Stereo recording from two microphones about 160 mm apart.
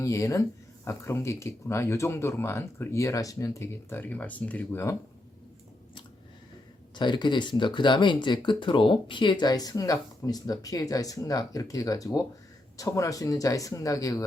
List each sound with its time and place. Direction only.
0.0 s speech: 20° left (ahead or behind)
6.9 s speech: 30° left (ahead or behind)